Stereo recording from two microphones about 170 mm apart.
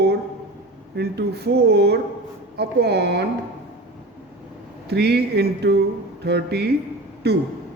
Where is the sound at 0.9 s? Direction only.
75° right (ahead or behind).